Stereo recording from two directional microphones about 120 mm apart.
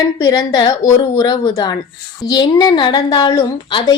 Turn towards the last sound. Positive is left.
turn(degrees=35)  # may be behind; listen again after turning